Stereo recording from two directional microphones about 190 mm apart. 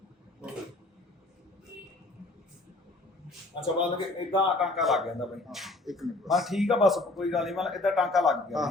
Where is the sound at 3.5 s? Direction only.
25° left (ahead or behind).